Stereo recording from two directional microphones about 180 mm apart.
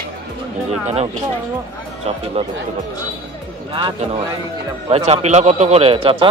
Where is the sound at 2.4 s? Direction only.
30° right (ahead or behind).